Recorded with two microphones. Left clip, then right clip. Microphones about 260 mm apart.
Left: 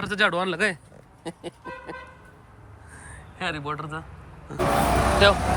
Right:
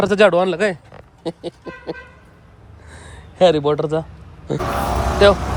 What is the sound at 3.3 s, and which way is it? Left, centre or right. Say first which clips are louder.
Speech: right 16 dB; right.